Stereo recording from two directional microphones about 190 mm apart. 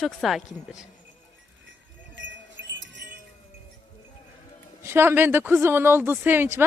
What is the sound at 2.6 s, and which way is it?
Music, 75° right (ahead or behind).